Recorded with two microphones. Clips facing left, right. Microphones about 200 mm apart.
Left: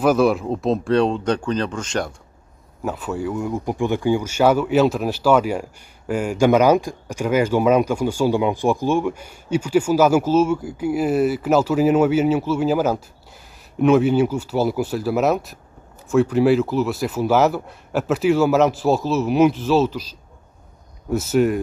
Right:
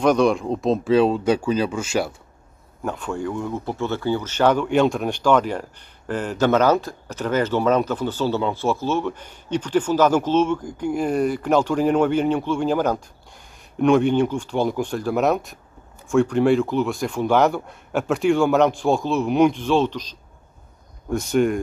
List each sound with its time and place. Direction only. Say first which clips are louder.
0.0 s speech: left 1 dB; 5° left (ahead or behind)
2.8 s speech: left 1 dB; 5° left (ahead or behind)